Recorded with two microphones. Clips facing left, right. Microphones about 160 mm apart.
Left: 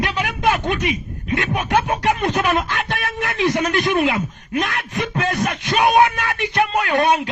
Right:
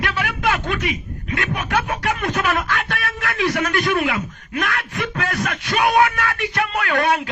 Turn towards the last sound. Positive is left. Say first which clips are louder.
# left 2 dB
turn(degrees=20)  # may be behind; listen again after turning